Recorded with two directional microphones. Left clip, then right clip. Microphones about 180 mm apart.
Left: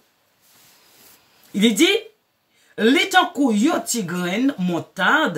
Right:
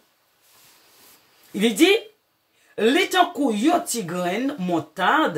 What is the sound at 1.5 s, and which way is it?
Speech, 15° left (ahead or behind).